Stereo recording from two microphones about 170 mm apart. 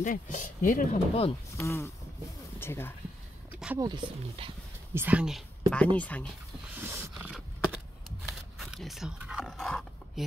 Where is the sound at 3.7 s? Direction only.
25° right (ahead or behind).